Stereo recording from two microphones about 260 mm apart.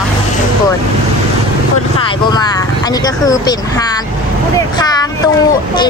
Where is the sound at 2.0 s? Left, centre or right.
Centre.